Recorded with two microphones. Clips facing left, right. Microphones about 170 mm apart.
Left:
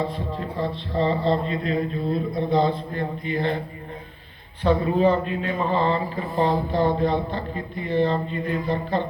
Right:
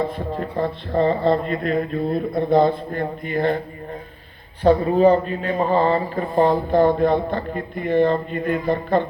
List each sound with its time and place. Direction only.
0.3 s speech: 50° right (ahead or behind)
4.6 s speech: 40° right (ahead or behind)